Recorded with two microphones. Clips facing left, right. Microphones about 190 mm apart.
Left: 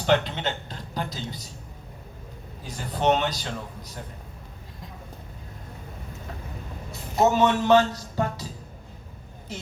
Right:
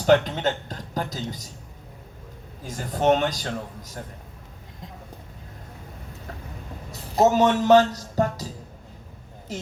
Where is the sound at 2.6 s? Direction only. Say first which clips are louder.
Right 2 dB; 45° right (ahead or behind).